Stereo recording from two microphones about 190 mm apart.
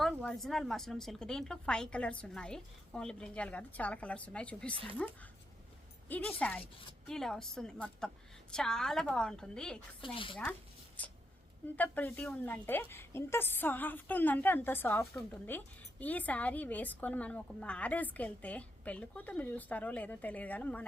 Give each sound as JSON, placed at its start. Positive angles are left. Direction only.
{"t": 0.0, "sound": "a woman's voice", "side_deg": 0}
{"t": 4.7, "sound": "speech", "side_deg": -25}
{"t": 6.1, "sound": "a woman's voice", "side_deg": 10}
{"t": 10.0, "sound": "a woman's voice", "side_deg": 25}
{"t": 11.0, "sound": "a woman's voice", "side_deg": 10}